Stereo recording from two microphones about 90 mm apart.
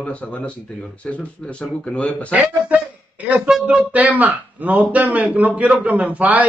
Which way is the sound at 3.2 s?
15° right (ahead or behind).